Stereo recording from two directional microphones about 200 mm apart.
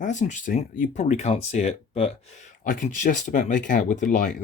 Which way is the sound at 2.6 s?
40° left (ahead or behind).